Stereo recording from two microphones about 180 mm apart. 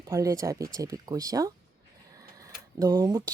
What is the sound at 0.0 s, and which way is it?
A woman's voice, 20° right (ahead or behind).